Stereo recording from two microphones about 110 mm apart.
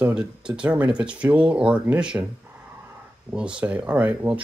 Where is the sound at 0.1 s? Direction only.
10° right (ahead or behind).